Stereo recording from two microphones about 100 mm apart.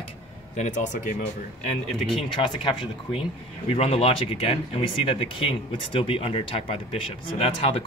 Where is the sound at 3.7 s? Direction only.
90° left.